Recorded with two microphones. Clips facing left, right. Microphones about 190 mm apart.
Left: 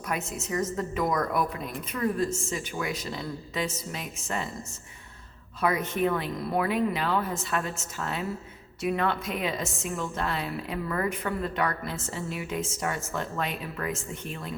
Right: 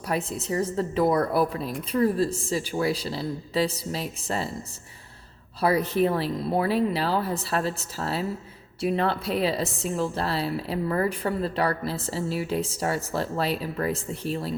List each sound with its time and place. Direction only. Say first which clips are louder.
0.1 s a woman's voice: right 4 dB; 35° right (ahead or behind)
5.5 s a woman's voice: right 4 dB; 35° right (ahead or behind)